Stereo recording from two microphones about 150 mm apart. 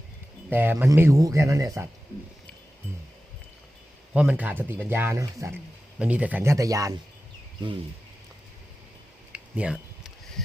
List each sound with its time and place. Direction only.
0.5 s speech: 15° right (ahead or behind)
4.1 s speech: 10° right (ahead or behind)
6.0 s speech: 10° right (ahead or behind)
9.3 s a sound: 10° right (ahead or behind)